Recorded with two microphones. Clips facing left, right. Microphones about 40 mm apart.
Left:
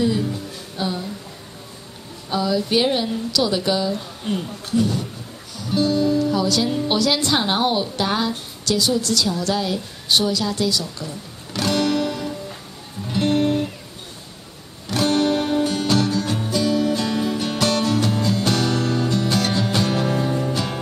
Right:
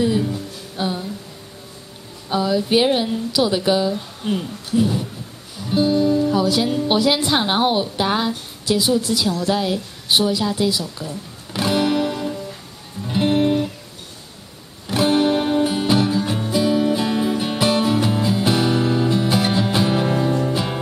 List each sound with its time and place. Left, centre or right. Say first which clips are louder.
0.0 s music: right 2 dB; centre
2.2 s a woman's voice: right 2 dB; centre
5.6 s music: right 2 dB; centre
6.9 s a woman's voice: right 3 dB; centre
13.1 s music: right 2 dB; centre
14.9 s music: right 2 dB; centre